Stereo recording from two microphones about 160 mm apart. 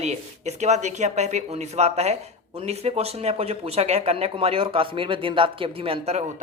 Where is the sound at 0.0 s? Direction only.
45° right (ahead or behind).